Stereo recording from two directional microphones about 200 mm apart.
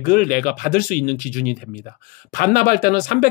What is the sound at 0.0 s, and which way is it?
Speech, 45° left (ahead or behind).